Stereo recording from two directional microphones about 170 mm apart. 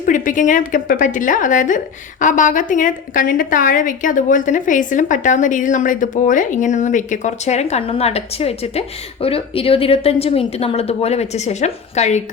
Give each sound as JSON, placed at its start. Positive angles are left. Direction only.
{"t": 0.0, "sound": "a woman's voice", "side_deg": 50}